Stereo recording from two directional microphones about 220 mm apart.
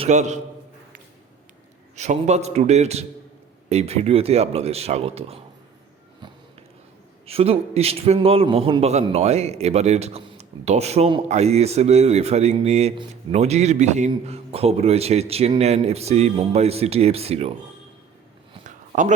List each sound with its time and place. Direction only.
0.0 s a man's voice: 30° right (ahead or behind)
2.0 s a man's voice: 30° right (ahead or behind)
7.3 s a man's voice: 25° right (ahead or behind)
18.9 s speech: 30° right (ahead or behind)